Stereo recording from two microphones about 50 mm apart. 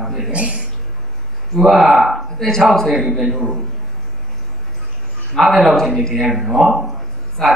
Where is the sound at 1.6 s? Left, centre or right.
Centre.